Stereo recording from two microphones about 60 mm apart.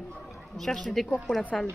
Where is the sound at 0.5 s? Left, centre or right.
Centre.